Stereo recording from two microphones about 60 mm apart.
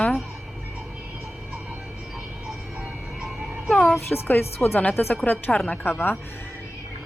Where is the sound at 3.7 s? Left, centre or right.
Centre.